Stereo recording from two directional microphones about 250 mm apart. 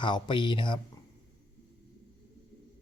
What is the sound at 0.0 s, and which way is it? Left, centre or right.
Speech, centre.